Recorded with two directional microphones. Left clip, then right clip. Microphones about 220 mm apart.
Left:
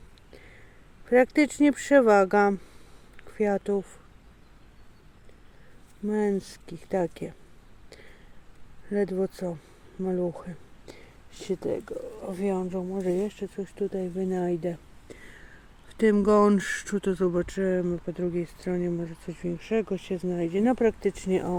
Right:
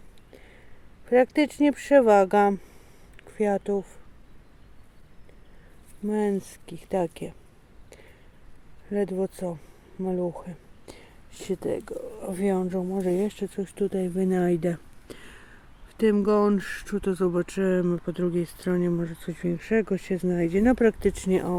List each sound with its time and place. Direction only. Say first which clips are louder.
1.0 s speech: even; centre (ahead or behind)
6.1 s speech: even; 10° right (ahead or behind)
8.9 s speech: even; 5° right (ahead or behind); by 15.4 s 25° right (ahead or behind)
16.0 s speech: left 1 dB; 5° right (ahead or behind); by 21.5 s 20° right (ahead or behind)